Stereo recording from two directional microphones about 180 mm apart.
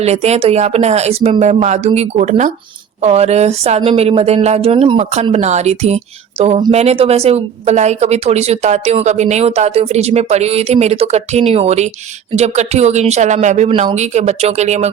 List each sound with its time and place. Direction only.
0.0 s speech: 35° right (ahead or behind)